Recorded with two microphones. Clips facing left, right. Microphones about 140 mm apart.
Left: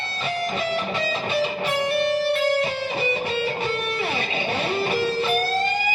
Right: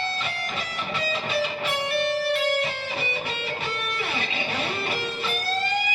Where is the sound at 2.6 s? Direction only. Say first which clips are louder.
Left 5 dB; 35° left (ahead or behind).